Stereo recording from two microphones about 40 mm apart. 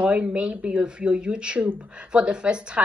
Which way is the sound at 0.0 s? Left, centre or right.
Right.